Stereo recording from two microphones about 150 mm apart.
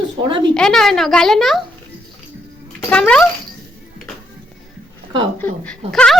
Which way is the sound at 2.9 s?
5° left (ahead or behind).